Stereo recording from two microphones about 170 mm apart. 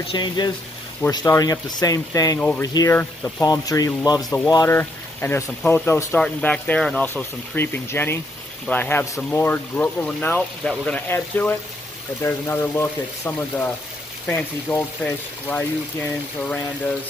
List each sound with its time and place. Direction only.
0.1 s speech: 25° left (ahead or behind); by 16.5 s 10° left (ahead or behind)